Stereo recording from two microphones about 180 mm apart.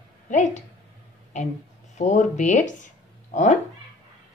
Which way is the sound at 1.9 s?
40° left (ahead or behind).